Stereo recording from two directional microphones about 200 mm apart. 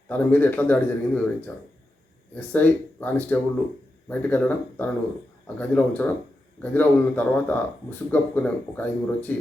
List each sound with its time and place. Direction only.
0.1 s speech: 10° left (ahead or behind)